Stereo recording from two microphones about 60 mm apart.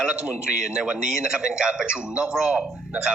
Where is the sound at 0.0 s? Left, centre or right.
Centre.